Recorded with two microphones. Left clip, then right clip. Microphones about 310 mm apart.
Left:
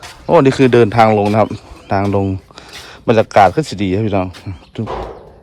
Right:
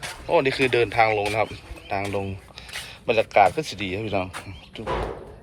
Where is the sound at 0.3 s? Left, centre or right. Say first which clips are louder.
Left 10 dB; left.